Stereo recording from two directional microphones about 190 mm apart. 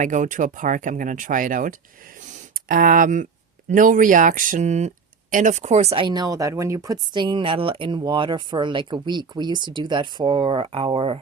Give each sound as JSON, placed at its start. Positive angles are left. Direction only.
{"t": 0.0, "sound": "speech", "side_deg": -40}